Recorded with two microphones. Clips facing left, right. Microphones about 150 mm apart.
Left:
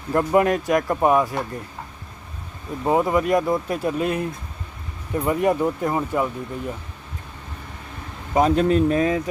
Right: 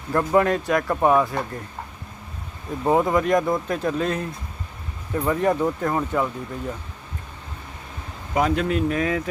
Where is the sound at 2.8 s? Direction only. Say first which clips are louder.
Even; centre (ahead or behind).